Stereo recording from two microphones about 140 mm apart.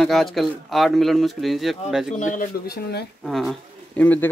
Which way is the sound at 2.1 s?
70° left (ahead or behind).